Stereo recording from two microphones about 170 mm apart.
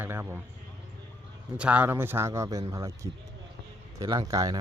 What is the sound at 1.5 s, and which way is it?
A man's voice, 5° right (ahead or behind).